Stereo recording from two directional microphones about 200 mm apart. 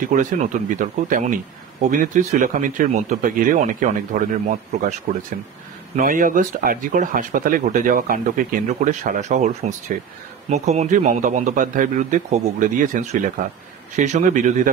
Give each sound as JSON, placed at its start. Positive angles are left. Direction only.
{"t": 0.0, "sound": "speech", "side_deg": -40}
{"t": 5.9, "sound": "speech", "side_deg": -45}